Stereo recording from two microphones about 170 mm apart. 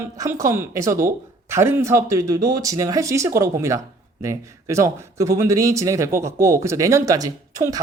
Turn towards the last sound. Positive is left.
turn(degrees=-20)  # may be behind; listen again after turning